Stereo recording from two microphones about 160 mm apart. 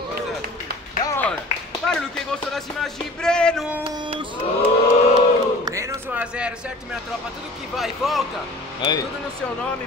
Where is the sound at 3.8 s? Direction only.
30° right (ahead or behind).